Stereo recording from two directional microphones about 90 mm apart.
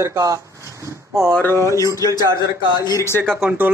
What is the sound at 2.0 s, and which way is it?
Speech, 40° left (ahead or behind).